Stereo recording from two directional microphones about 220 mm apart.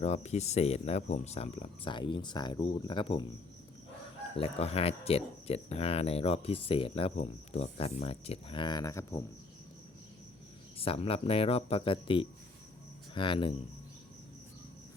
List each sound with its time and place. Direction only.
0.0 s speech: 30° left (ahead or behind)
4.4 s speech: 25° left (ahead or behind)
10.8 s speech: 25° left (ahead or behind)